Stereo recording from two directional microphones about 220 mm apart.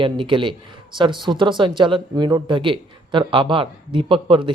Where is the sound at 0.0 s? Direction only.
25° right (ahead or behind).